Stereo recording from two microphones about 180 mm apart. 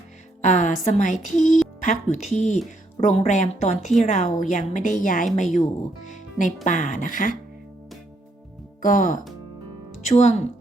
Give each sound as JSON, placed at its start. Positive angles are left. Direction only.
{"t": 0.4, "sound": "a woman's voice", "side_deg": 45}
{"t": 6.7, "sound": "a woman's voice", "side_deg": 45}
{"t": 8.8, "sound": "a woman's voice", "side_deg": 45}